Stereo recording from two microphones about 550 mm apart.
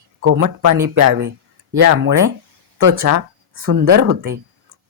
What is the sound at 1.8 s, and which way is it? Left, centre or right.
Speech, right.